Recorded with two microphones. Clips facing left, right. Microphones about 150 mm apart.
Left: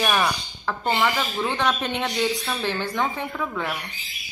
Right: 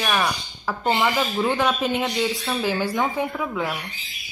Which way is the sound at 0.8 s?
10° right (ahead or behind).